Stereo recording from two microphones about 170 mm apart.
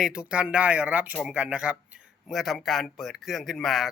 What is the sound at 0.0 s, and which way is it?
Speech, 5° right (ahead or behind).